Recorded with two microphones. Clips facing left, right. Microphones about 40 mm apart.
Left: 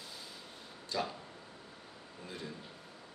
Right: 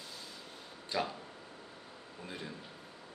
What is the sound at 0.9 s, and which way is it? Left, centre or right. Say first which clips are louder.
Speech: right 1 dB; centre.